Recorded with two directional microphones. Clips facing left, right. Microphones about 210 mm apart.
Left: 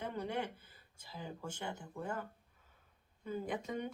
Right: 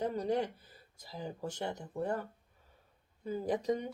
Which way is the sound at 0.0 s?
35° right (ahead or behind).